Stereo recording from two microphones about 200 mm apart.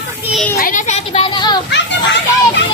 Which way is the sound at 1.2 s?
20° left (ahead or behind).